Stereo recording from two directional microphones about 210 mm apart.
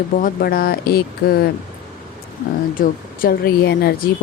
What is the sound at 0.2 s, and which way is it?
Speech, 45° left (ahead or behind).